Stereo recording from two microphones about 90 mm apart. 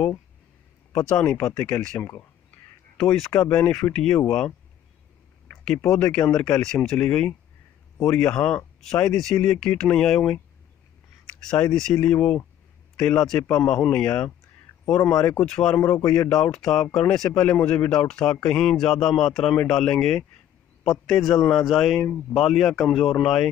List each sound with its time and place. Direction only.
1.0 s a man's voice: 15° left (ahead or behind)
3.0 s speech: 5° left (ahead or behind)
3.3 s a man's voice: 15° left (ahead or behind)
5.9 s a man's voice: 15° left (ahead or behind)
11.4 s a man's voice: 10° left (ahead or behind)